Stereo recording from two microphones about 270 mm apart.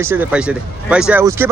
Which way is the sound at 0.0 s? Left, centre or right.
Centre.